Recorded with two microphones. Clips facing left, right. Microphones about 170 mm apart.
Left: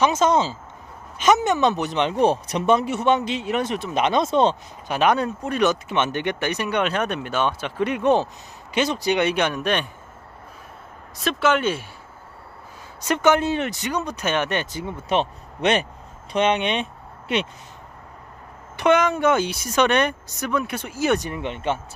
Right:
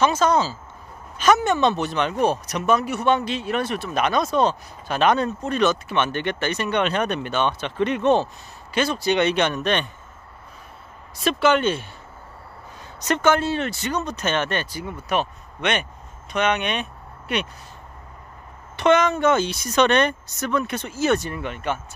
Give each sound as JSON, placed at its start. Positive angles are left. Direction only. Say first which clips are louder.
{"t": 0.0, "sound": "speech", "louder": "even", "side_deg": 20}
{"t": 4.8, "sound": "speech", "louder": "even", "side_deg": 10}
{"t": 11.2, "sound": "speech", "louder": "right 2 dB", "side_deg": 0}
{"t": 13.0, "sound": "speech", "louder": "left 1 dB", "side_deg": 15}
{"t": 18.8, "sound": "speech", "louder": "even", "side_deg": 10}